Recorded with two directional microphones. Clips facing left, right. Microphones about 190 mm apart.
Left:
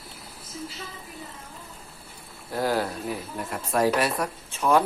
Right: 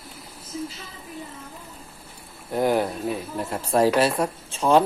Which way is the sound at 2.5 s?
20° right (ahead or behind).